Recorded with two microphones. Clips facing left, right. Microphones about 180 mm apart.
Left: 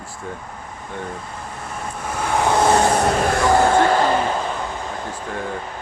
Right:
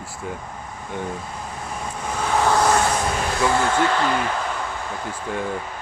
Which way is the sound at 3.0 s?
60° left (ahead or behind).